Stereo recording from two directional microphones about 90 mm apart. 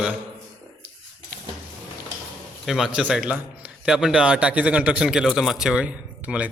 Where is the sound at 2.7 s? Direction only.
5° right (ahead or behind).